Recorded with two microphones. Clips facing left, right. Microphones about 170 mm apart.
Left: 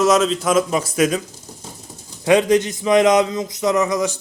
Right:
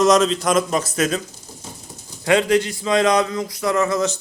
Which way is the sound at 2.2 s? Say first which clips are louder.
Left 2 dB; 15° left (ahead or behind).